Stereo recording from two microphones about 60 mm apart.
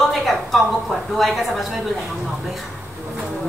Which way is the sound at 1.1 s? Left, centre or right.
Centre.